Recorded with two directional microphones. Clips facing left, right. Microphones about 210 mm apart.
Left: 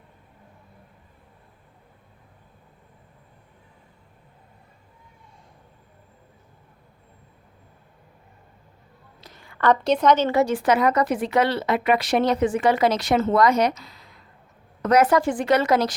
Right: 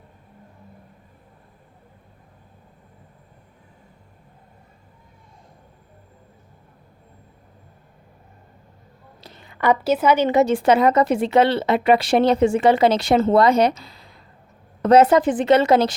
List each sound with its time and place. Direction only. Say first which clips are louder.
9.2 s a woman's voice: right 1 dB; 25° right (ahead or behind)